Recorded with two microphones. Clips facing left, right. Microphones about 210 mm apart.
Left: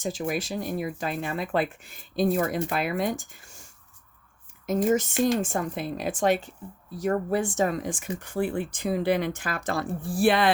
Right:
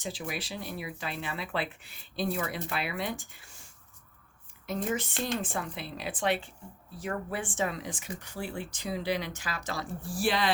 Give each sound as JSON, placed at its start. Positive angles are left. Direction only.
{"t": 0.0, "sound": "speech", "side_deg": 45}